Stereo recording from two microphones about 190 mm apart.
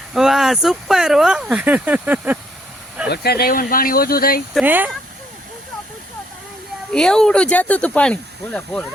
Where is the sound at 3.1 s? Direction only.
55° left (ahead or behind).